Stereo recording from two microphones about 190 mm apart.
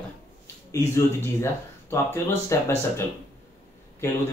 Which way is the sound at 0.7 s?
15° left (ahead or behind).